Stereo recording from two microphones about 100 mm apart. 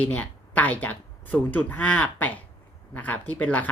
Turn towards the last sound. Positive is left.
turn(degrees=15)  # may be behind; listen again after turning